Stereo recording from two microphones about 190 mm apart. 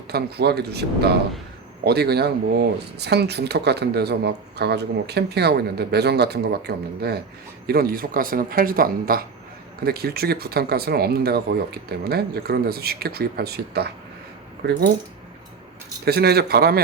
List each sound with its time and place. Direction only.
0.1 s speech: 55° right (ahead or behind)
16.0 s speech: 55° right (ahead or behind)